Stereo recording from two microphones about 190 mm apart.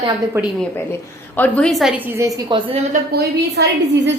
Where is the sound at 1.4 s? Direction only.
5° left (ahead or behind); by 2.7 s 20° right (ahead or behind).